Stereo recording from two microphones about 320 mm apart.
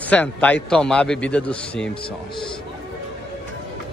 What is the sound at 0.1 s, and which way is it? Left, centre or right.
A man's voice, centre.